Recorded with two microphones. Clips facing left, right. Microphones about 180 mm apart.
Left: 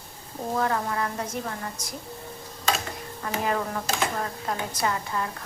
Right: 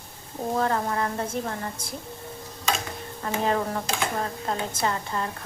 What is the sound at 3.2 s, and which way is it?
A woman's voice, 30° right (ahead or behind).